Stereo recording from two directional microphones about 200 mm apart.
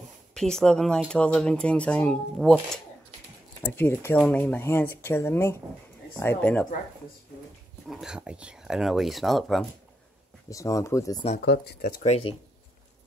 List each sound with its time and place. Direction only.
0.3 s speech: 5° left (ahead or behind)
3.6 s speech: 10° left (ahead or behind)
7.9 s speech: 5° right (ahead or behind)
10.5 s speech: 15° left (ahead or behind)
11.4 s speech: 55° left (ahead or behind)
12.0 s speech: 30° left (ahead or behind)